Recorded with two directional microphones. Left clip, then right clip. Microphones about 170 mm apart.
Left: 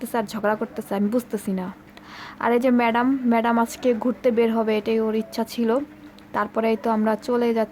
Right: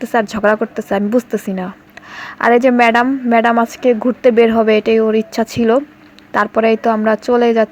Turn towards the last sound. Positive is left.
turn(degrees=-20)  # may be behind; listen again after turning